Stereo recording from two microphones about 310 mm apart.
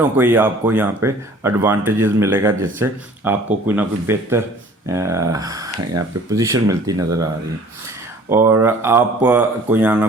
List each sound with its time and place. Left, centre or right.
0.0 s speech: centre
8.3 s speech: centre